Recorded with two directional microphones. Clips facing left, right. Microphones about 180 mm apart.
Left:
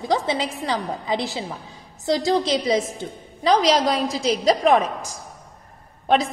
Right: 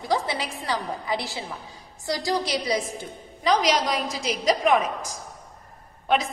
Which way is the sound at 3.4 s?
30° left (ahead or behind).